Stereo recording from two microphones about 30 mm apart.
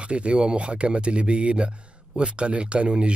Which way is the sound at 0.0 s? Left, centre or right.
Right.